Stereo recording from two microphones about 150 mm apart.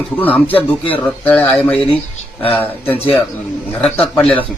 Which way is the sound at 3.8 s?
10° left (ahead or behind).